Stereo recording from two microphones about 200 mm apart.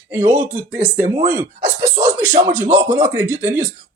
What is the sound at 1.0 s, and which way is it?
Speech, 40° right (ahead or behind).